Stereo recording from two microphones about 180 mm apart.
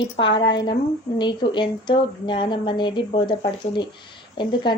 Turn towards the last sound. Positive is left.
turn(degrees=25)  # may be behind; listen again after turning